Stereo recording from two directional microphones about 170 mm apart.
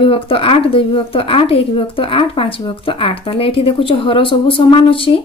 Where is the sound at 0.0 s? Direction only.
30° left (ahead or behind).